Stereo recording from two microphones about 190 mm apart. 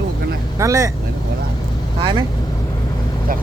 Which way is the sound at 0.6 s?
15° right (ahead or behind).